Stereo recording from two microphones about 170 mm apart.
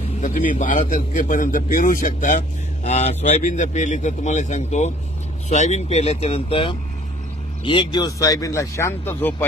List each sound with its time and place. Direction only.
0.2 s speech: 50° left (ahead or behind); by 9.5 s 10° left (ahead or behind)